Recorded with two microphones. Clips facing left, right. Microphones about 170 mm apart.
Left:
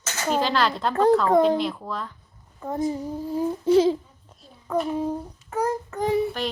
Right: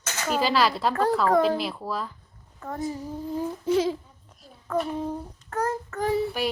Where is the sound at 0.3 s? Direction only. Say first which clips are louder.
Right 1 dB; 5° right (ahead or behind).